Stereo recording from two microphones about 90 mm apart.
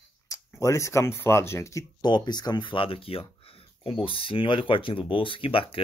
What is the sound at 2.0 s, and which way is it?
Speech, 55° left (ahead or behind).